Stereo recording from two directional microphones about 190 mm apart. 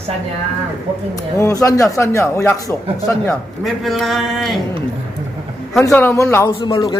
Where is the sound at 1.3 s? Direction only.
15° left (ahead or behind).